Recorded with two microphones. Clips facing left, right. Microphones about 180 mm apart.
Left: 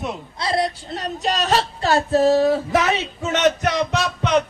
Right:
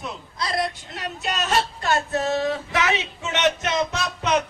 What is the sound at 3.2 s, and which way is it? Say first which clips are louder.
Music: left 5 dB; 40° left (ahead or behind).